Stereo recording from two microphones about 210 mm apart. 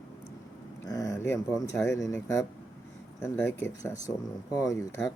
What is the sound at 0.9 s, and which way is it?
Speech, 15° left (ahead or behind).